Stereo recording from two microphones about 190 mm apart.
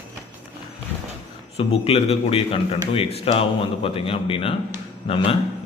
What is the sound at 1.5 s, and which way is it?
A man's voice, 30° left (ahead or behind).